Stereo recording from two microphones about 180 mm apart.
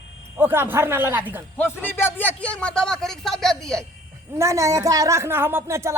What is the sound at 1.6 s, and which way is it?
A man's voice, 10° left (ahead or behind).